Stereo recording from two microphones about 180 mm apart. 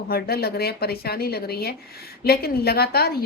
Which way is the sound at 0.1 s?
60° left (ahead or behind).